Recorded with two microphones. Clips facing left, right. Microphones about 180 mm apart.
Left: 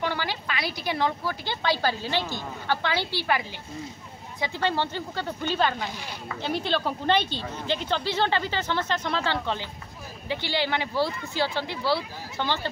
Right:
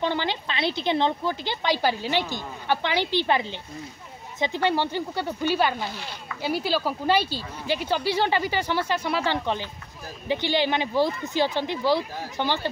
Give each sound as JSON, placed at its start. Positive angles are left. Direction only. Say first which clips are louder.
{"t": 0.0, "sound": "a woman's voice", "louder": "right 3 dB", "side_deg": -20}